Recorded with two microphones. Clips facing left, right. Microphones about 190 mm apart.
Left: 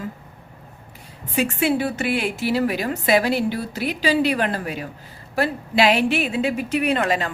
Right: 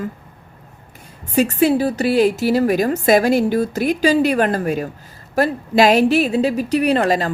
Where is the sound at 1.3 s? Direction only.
40° right (ahead or behind).